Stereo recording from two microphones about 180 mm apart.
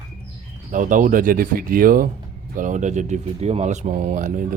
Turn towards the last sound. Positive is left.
turn(degrees=-45)  # may be behind; listen again after turning